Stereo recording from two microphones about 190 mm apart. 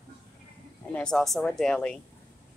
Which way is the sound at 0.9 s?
5° left (ahead or behind).